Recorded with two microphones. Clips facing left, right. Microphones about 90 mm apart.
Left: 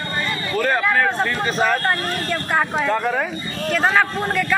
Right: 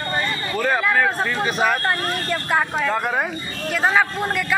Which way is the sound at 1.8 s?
Centre (ahead or behind).